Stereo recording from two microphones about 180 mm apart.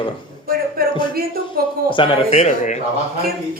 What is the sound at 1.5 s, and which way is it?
Speech, 25° left (ahead or behind).